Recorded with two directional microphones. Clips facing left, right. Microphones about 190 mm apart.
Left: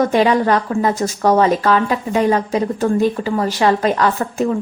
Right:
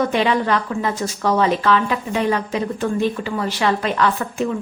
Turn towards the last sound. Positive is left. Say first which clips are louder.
# left 2 dB
turn(degrees=40)  # may be behind; listen again after turning